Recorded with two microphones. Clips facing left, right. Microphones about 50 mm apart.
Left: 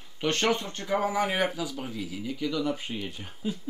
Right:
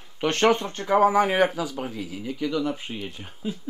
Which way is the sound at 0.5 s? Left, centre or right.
Right.